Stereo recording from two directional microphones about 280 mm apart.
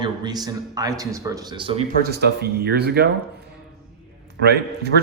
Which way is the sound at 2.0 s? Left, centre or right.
Right.